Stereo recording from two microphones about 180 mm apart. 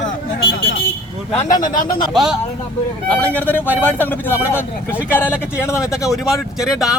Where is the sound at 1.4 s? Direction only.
45° left (ahead or behind).